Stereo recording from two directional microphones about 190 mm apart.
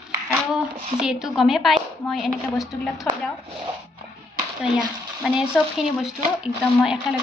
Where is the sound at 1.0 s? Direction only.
5° right (ahead or behind).